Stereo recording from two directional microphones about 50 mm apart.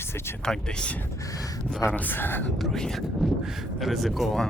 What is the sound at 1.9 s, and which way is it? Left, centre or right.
Speech, left.